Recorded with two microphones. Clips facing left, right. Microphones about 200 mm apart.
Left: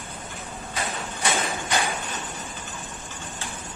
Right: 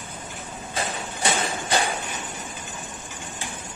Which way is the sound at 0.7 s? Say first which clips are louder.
Right 2 dB; 30° right (ahead or behind).